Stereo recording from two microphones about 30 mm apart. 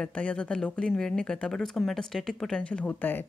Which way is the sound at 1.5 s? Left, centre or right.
Centre.